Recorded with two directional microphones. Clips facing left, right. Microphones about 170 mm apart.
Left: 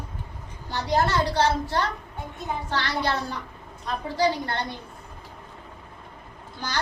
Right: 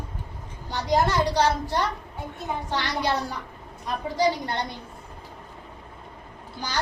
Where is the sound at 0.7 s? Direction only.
15° right (ahead or behind).